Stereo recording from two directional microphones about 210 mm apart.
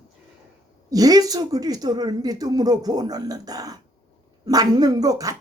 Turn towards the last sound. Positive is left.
turn(degrees=-15)  # may be behind; listen again after turning